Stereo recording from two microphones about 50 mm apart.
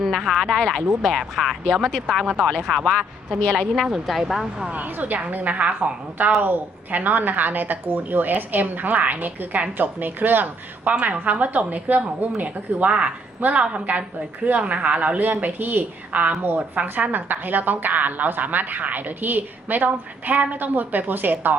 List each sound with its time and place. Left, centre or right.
0.0 s speech: centre
3.4 s a woman's voice: centre
3.8 s speech: centre
4.7 s a woman's voice: right
6.4 s a woman's voice: right